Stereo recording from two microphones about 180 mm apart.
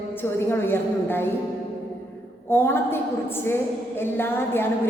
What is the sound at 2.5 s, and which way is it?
A woman's voice, 10° left (ahead or behind).